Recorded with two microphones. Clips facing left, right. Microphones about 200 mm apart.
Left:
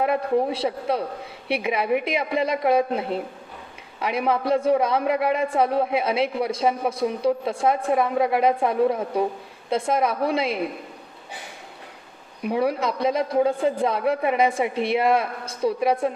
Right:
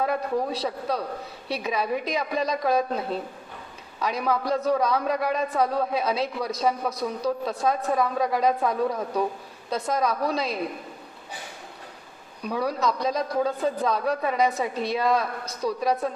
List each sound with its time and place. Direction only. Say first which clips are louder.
0.0 s a man's voice: left 4 dB; 25° left (ahead or behind)
12.4 s a man's voice: left 4 dB; 25° left (ahead or behind)